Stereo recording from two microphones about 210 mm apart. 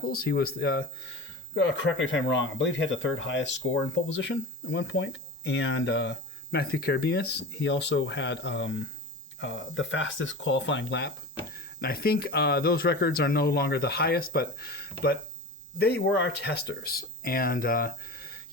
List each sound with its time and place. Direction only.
0.1 s speech: 50° left (ahead or behind)
11.5 s speech: 45° left (ahead or behind)